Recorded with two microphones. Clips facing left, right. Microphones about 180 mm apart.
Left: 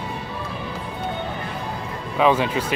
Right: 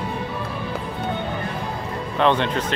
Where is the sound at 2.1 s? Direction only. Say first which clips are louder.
Left 1 dB; 5° left (ahead or behind).